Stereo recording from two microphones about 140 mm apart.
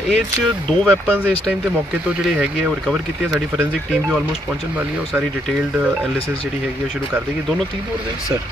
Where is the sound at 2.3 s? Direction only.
5° right (ahead or behind).